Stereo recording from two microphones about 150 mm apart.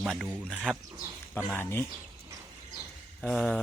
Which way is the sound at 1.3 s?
15° left (ahead or behind).